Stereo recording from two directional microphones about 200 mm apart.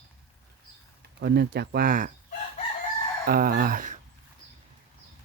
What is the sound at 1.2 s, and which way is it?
Speech, 55° right (ahead or behind).